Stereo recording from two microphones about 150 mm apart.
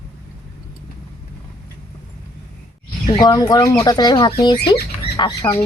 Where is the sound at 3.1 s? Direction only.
25° left (ahead or behind).